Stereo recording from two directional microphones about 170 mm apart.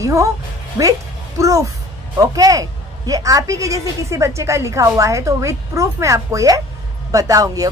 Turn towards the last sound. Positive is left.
turn(degrees=-20)  # may be behind; listen again after turning